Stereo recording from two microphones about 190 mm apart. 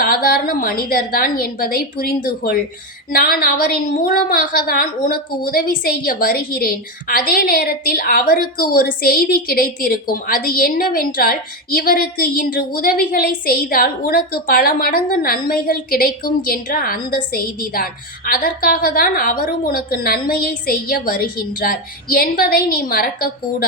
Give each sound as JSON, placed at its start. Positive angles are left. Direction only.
{"t": 0.0, "sound": "a woman's voice", "side_deg": 50}